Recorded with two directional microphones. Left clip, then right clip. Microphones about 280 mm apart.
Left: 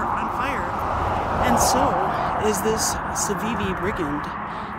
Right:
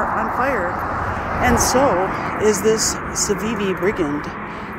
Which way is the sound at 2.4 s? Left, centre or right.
Centre.